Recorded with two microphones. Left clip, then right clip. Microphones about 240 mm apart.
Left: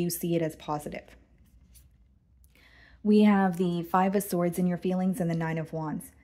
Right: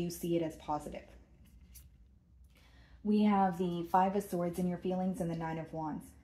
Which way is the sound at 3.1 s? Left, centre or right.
Left.